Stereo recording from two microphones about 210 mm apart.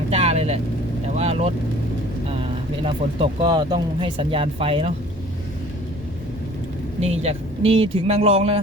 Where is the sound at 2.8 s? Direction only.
25° right (ahead or behind).